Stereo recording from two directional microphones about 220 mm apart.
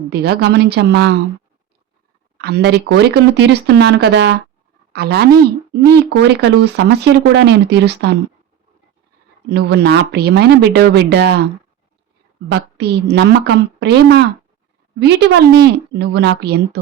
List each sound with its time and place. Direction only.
0.1 s speech: 45° right (ahead or behind)
2.4 s speech: 45° right (ahead or behind)
9.5 s speech: 50° right (ahead or behind)
12.5 s speech: 50° right (ahead or behind)